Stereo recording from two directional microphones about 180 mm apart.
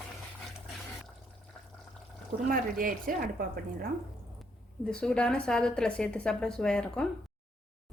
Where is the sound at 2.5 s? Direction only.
50° right (ahead or behind).